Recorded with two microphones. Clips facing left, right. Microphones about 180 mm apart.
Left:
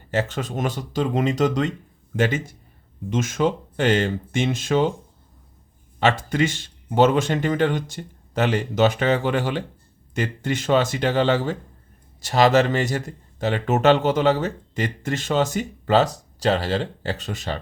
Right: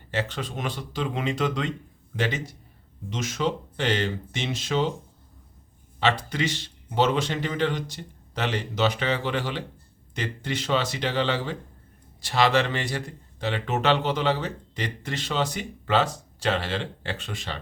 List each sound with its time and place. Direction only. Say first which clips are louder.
0.1 s speech: left 5 dB; 45° left (ahead or behind)
6.0 s speech: left 5 dB; 45° left (ahead or behind)